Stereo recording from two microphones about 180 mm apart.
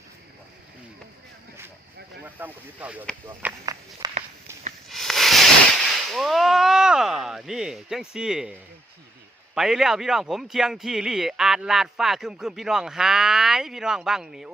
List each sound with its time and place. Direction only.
2.2 s speech: 10° right (ahead or behind)
4.0 s walk: 20° right (ahead or behind)
4.9 s speech: centre (ahead or behind)
9.6 s speech: 5° right (ahead or behind)